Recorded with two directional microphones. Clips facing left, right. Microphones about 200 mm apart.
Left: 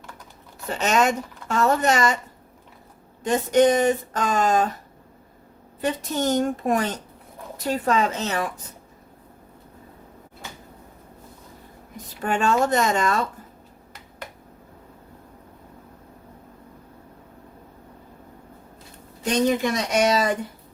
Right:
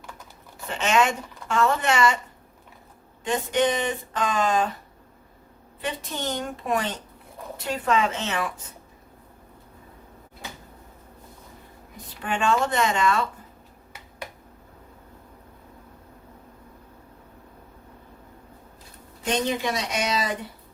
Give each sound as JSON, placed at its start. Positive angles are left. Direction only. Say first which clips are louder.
{"t": 0.7, "sound": "speech", "louder": "left 2 dB", "side_deg": 40}
{"t": 3.2, "sound": "speech", "louder": "left 6 dB", "side_deg": 40}
{"t": 5.8, "sound": "speech", "louder": "left 6 dB", "side_deg": 45}
{"t": 12.2, "sound": "speech", "louder": "left 3 dB", "side_deg": 40}
{"t": 19.2, "sound": "speech", "louder": "left 4 dB", "side_deg": 45}